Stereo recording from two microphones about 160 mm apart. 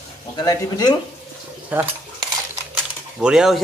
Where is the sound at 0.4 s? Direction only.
25° left (ahead or behind).